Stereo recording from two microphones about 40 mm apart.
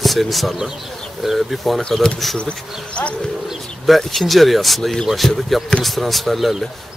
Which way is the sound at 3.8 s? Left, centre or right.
Centre.